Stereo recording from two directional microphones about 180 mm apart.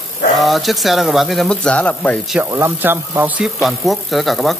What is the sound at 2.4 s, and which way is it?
A man's voice, 10° right (ahead or behind).